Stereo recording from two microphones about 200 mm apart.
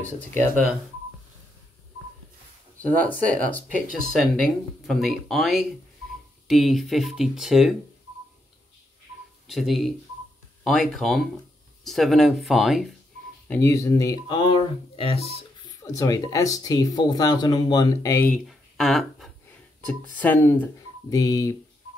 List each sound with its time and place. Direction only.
2.8 s speech: 10° left (ahead or behind)
3.6 s speech: 40° left (ahead or behind)
4.0 s speech: centre (ahead or behind)
9.5 s speech: centre (ahead or behind)
13.5 s speech: 15° left (ahead or behind); by 15.2 s 30° left (ahead or behind)
15.6 s speech: 20° left (ahead or behind)